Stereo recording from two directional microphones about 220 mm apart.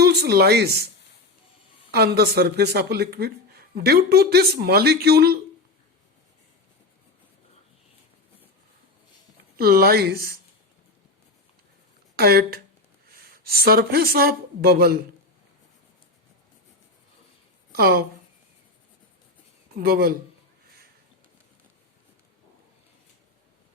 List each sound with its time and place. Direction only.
0.0 s speech: 45° right (ahead or behind)
1.9 s speech: 45° right (ahead or behind)
9.6 s speech: 45° right (ahead or behind)
12.1 s speech: 45° right (ahead or behind)
17.7 s a sound: 45° right (ahead or behind)
19.7 s speech: 45° right (ahead or behind)